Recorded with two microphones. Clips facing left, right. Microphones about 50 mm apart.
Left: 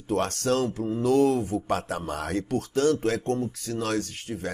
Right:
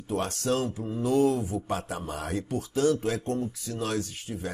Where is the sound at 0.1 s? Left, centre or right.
Left.